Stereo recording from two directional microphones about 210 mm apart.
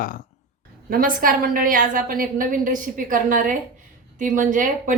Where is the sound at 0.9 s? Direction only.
40° right (ahead or behind).